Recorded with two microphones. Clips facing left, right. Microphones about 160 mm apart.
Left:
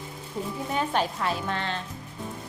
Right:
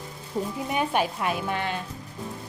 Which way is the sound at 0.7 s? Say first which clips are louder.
Right 1 dB; 15° right (ahead or behind).